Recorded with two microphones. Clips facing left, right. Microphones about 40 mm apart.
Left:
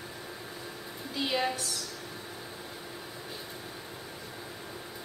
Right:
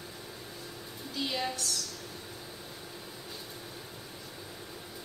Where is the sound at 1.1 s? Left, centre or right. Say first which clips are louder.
Left 4 dB; centre.